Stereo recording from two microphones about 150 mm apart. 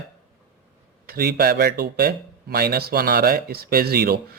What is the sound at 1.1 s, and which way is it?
Speech, 90° right.